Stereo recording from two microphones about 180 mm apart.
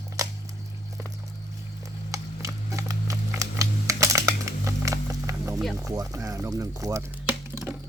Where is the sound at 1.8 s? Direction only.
15° right (ahead or behind).